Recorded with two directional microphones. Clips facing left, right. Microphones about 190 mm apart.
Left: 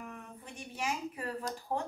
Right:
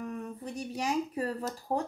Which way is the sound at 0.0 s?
35° right (ahead or behind).